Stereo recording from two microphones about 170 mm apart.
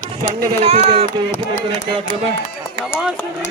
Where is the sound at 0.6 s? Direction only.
35° right (ahead or behind).